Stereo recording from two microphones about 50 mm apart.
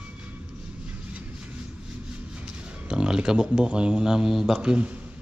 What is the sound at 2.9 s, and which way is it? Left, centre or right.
A man's voice, centre.